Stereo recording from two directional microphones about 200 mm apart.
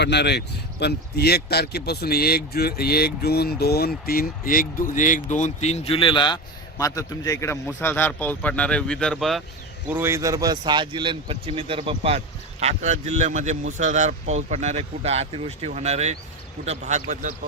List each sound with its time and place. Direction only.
0.0 s speech: 60° left (ahead or behind); by 9.4 s centre (ahead or behind)
9.9 s speech: 10° right (ahead or behind); by 17.3 s 35° right (ahead or behind)